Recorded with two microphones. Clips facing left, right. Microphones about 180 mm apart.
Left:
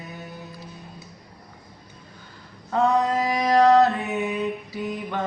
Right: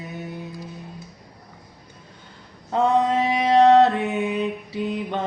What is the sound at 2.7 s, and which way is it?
Mantra, 25° right (ahead or behind).